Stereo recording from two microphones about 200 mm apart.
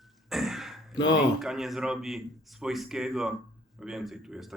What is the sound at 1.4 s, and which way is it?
A man's voice, centre (ahead or behind).